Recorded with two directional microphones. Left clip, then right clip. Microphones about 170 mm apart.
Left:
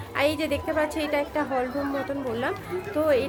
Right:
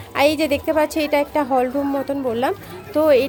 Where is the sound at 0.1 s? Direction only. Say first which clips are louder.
Right 7 dB; 40° right (ahead or behind).